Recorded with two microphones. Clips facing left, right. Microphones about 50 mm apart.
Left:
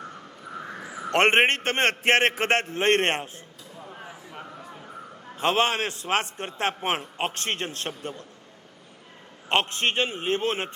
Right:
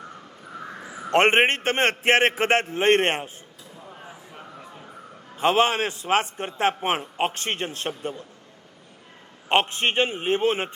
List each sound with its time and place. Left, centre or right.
0.8 s crow: centre
1.1 s a man's voice: centre
5.4 s a man's voice: centre
9.5 s a man's voice: centre